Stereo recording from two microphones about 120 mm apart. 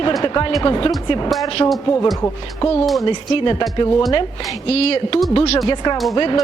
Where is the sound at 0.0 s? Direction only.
40° left (ahead or behind).